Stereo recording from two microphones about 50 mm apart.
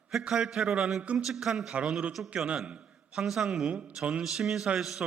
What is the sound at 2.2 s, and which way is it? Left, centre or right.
Speech, right.